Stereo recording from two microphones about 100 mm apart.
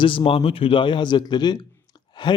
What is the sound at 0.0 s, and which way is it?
Speech, 55° left (ahead or behind).